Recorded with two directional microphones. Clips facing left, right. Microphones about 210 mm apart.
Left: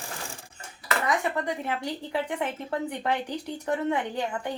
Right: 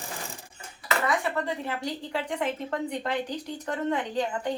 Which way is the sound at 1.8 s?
10° left (ahead or behind).